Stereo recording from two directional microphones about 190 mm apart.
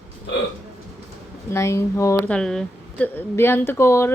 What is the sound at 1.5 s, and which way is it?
A woman's voice, 15° left (ahead or behind).